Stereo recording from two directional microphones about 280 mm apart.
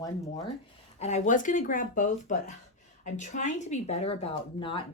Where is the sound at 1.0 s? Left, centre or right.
Left.